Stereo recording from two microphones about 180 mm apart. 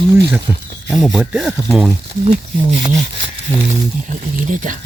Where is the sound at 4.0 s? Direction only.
45° right (ahead or behind).